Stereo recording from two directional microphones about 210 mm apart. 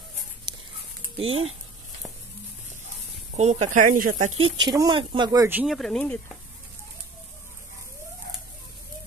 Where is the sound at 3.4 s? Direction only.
30° right (ahead or behind).